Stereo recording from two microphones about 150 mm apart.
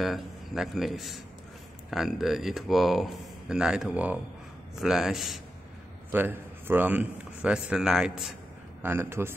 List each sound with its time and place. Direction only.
0.0 s speech: centre (ahead or behind)
6.1 s speech: 15° right (ahead or behind)
8.8 s a man's voice: 15° right (ahead or behind)